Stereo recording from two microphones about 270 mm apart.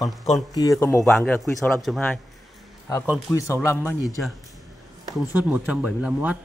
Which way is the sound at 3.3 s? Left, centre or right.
Centre.